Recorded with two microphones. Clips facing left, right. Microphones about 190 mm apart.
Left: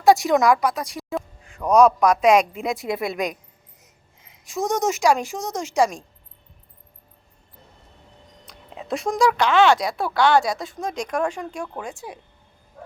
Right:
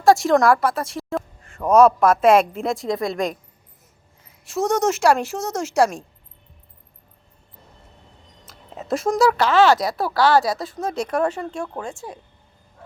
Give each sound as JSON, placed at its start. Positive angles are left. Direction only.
{"t": 0.2, "sound": "a woman's voice", "side_deg": 0}
{"t": 4.7, "sound": "a woman's voice", "side_deg": 0}
{"t": 8.8, "sound": "a woman's voice", "side_deg": 0}
{"t": 11.3, "sound": "speech", "side_deg": 10}
{"t": 11.6, "sound": "a woman's voice", "side_deg": 0}
{"t": 11.9, "sound": "speech", "side_deg": 15}